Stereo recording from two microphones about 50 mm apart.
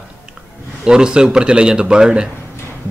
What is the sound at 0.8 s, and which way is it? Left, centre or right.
A man's voice, centre.